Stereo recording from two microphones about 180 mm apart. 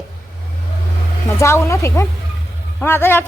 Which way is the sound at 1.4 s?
15° left (ahead or behind).